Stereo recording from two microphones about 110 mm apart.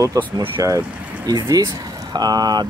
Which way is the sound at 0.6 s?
35° right (ahead or behind).